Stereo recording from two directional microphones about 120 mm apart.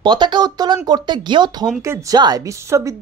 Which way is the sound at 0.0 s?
40° right (ahead or behind).